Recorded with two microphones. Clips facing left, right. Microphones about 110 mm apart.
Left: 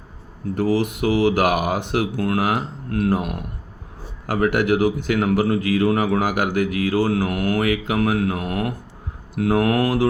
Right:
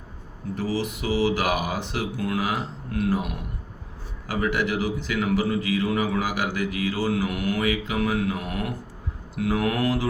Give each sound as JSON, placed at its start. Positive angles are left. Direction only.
{"t": 0.5, "sound": "a man's voice", "side_deg": 55}